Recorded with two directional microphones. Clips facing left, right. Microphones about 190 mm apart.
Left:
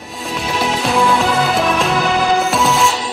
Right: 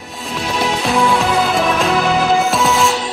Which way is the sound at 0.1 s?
Centre (ahead or behind).